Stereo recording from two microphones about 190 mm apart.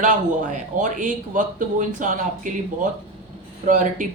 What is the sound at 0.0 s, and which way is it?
A man's voice, 40° right (ahead or behind).